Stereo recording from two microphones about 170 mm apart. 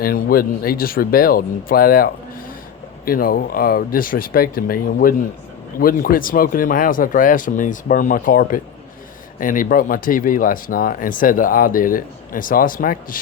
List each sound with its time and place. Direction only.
0.0 s speech: 60° left (ahead or behind)